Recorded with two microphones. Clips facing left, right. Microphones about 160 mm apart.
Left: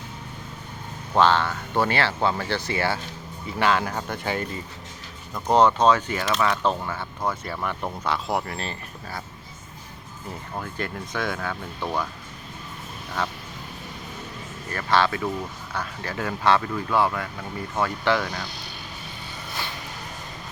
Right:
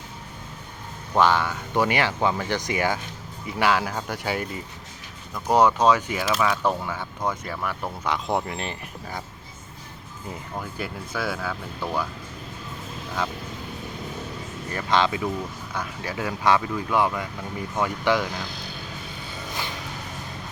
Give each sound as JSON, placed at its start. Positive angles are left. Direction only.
{"t": 1.2, "sound": "speech", "side_deg": -10}
{"t": 7.5, "sound": "speech", "side_deg": 0}
{"t": 8.0, "sound": "speech", "side_deg": -15}
{"t": 10.6, "sound": "speech", "side_deg": -5}
{"t": 14.7, "sound": "speech", "side_deg": -15}